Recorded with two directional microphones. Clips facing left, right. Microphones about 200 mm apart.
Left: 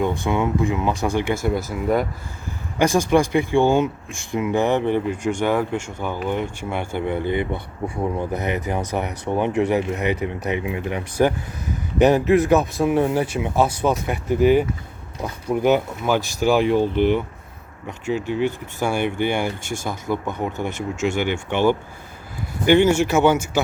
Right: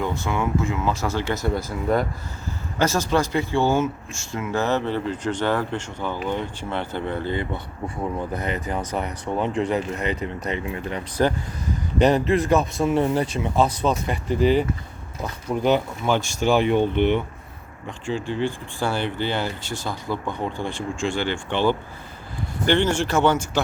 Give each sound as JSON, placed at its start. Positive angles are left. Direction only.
{"t": 0.3, "sound": "speech", "side_deg": 20}